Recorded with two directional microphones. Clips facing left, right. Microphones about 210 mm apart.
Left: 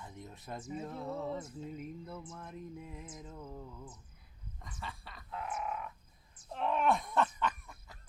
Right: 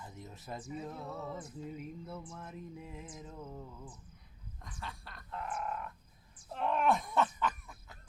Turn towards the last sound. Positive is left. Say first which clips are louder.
# even
turn(degrees=0)  # may be behind; listen again after turning